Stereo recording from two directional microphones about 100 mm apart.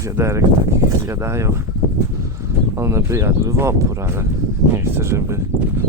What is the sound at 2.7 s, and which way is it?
Speech, 25° right (ahead or behind).